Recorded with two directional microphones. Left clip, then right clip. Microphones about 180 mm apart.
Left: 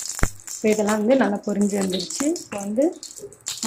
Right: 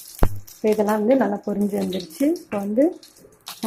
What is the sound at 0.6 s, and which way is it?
Speech, 15° right (ahead or behind).